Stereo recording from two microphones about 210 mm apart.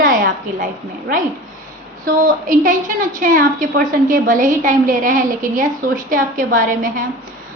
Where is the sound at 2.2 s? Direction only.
40° right (ahead or behind).